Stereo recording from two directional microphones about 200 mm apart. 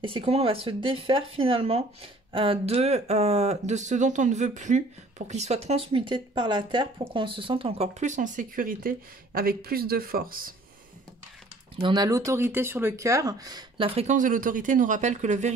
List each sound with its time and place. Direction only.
0.0 s speech: 25° right (ahead or behind); by 10.5 s 45° right (ahead or behind)
11.8 s speech: 20° right (ahead or behind); by 15.5 s 35° right (ahead or behind)